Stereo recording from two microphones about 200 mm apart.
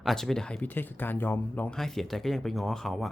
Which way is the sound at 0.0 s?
Centre (ahead or behind).